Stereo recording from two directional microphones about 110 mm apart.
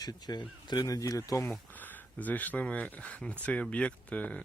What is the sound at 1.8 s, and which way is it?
Speech, 15° left (ahead or behind).